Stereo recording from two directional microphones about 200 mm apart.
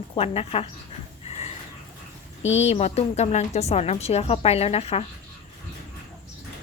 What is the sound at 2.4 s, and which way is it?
A woman's voice, 35° left (ahead or behind).